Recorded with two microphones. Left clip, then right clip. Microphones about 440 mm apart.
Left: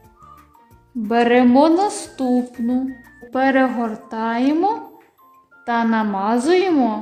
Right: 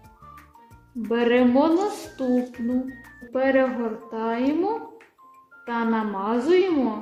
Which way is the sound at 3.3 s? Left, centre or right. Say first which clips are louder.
Left 4 dB; centre.